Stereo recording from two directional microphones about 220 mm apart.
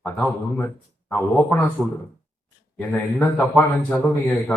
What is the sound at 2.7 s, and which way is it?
A man's voice, 5° left (ahead or behind).